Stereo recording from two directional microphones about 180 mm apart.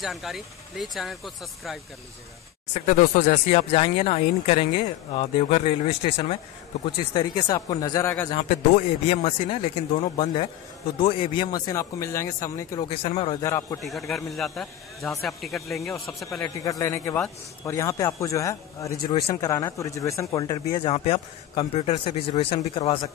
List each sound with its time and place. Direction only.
0.0 s speech: centre (ahead or behind)
2.7 s speech: 45° left (ahead or behind)
7.2 s a man's voice: 20° left (ahead or behind)
8.4 s speech: 40° left (ahead or behind); by 12.8 s 15° left (ahead or behind)
12.8 s a man's voice: 30° left (ahead or behind)
13.5 s speech: 15° left (ahead or behind)
13.8 s speech: centre (ahead or behind)
16.4 s a man's voice: 20° left (ahead or behind)